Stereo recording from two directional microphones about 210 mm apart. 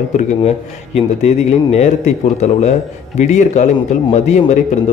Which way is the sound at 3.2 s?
35° left (ahead or behind).